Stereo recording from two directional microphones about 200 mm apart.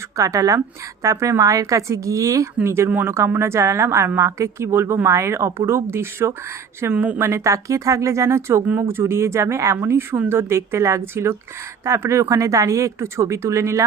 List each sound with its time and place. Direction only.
0.2 s a woman's voice: 15° right (ahead or behind)